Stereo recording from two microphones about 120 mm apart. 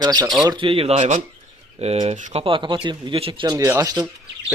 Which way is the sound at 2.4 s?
45° right (ahead or behind).